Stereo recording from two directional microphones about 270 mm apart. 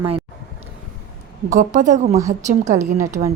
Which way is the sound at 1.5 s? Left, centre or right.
Right.